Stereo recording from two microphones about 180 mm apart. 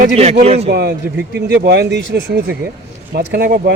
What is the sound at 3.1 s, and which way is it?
Speech, 60° right (ahead or behind).